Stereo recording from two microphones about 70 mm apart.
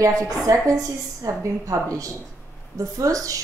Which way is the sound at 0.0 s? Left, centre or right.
Right.